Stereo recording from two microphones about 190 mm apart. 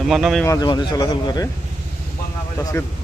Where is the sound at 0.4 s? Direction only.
20° left (ahead or behind).